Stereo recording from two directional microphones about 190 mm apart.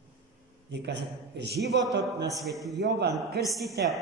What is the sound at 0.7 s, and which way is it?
Speech, 65° right (ahead or behind).